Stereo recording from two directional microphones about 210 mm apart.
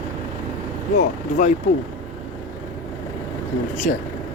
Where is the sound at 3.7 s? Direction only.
35° left (ahead or behind).